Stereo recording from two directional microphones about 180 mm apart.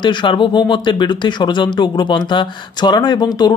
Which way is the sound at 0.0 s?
25° left (ahead or behind).